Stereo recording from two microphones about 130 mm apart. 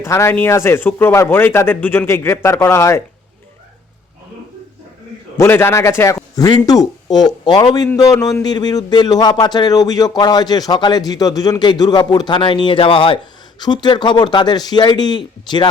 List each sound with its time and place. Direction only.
0.0 s a man's voice: 20° left (ahead or behind)
5.4 s a man's voice: 20° left (ahead or behind); by 15.6 s 35° left (ahead or behind)